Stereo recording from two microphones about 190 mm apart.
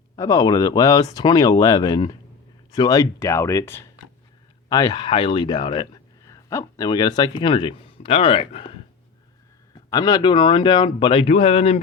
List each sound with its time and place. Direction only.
0.2 s a man's voice: 20° left (ahead or behind)
9.9 s a man's voice: 20° left (ahead or behind)